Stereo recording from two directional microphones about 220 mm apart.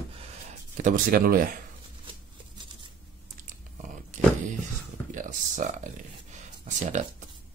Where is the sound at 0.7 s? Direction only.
35° right (ahead or behind).